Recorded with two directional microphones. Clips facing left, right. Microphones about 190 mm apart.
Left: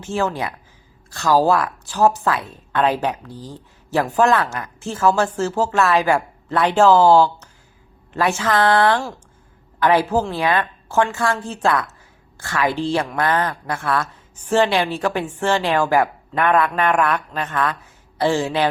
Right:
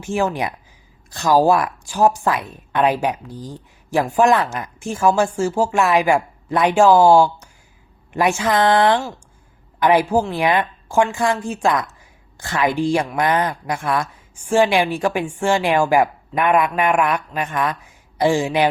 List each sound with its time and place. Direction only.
0.0 s a woman's voice: 15° right (ahead or behind)